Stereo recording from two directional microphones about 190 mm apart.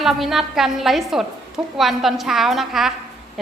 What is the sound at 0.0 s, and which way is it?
A woman's voice, centre (ahead or behind).